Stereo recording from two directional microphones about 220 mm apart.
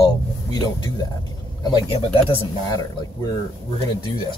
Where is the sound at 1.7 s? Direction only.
20° left (ahead or behind).